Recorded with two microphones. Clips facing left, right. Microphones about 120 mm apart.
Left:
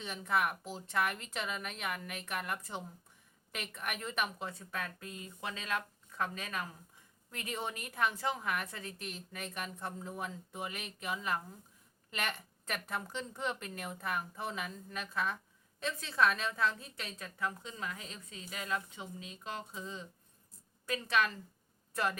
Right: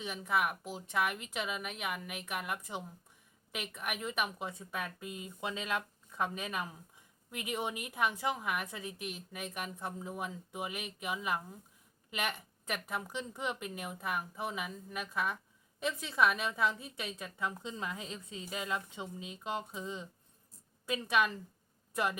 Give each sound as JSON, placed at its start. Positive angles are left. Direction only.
{"t": 0.0, "sound": "a woman's voice", "side_deg": -5}